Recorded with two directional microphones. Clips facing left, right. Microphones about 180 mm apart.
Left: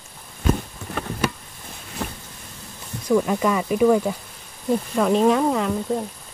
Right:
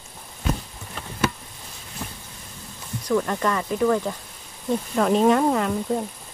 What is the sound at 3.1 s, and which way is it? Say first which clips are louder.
Speech: left 3 dB; 10° left (ahead or behind).